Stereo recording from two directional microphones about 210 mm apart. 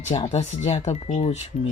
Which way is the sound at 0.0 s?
30° left (ahead or behind).